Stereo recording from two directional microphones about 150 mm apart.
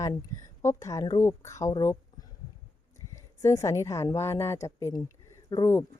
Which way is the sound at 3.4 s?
20° left (ahead or behind).